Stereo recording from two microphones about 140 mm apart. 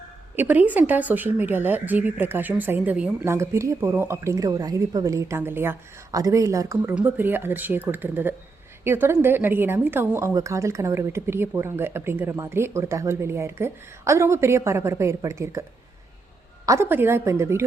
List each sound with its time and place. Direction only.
0.3 s a woman's voice: 10° right (ahead or behind)
16.6 s a woman's voice: 20° right (ahead or behind)